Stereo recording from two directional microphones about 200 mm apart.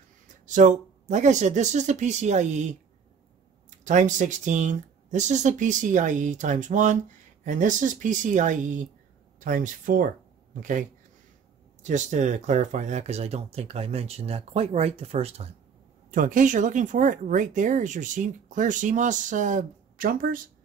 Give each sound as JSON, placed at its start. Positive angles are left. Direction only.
{"t": 0.5, "sound": "speech", "side_deg": -40}
{"t": 3.8, "sound": "speech", "side_deg": -40}
{"t": 16.1, "sound": "speech", "side_deg": -40}